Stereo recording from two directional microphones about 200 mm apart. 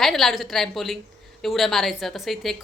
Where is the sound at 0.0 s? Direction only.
Centre (ahead or behind).